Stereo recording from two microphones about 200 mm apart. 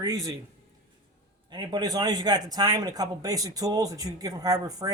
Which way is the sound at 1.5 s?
20° right (ahead or behind).